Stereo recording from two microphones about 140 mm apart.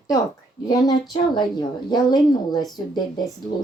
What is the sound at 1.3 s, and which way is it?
A woman's voice, 30° left (ahead or behind).